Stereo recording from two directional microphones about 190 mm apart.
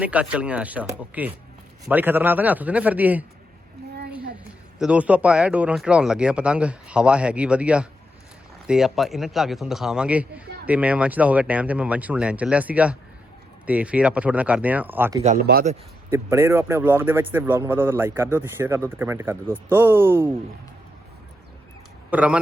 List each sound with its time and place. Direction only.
0.0 s a man's voice: 5° right (ahead or behind)
4.8 s a man's voice: 5° right (ahead or behind)
15.5 s a man's voice: 55° right (ahead or behind)
16.0 s a man's voice: 15° right (ahead or behind)
22.1 s a man's voice: 5° right (ahead or behind)